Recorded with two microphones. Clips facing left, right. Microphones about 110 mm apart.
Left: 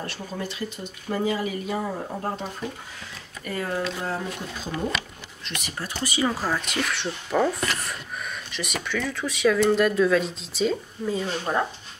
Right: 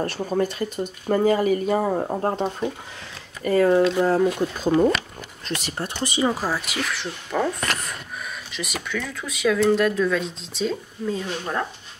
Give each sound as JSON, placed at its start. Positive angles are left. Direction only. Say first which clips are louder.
{"t": 0.0, "sound": "speech", "louder": "right 9 dB", "side_deg": -45}
{"t": 3.4, "sound": "speech", "louder": "right 11 dB", "side_deg": -40}
{"t": 4.3, "sound": "speech", "louder": "right 11 dB", "side_deg": -50}
{"t": 5.4, "sound": "speech", "louder": "right 5 dB", "side_deg": -35}
{"t": 5.9, "sound": "speech", "louder": "right 2 dB", "side_deg": -25}